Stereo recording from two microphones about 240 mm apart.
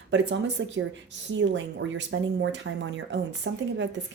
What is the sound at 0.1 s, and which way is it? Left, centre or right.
Speech, right.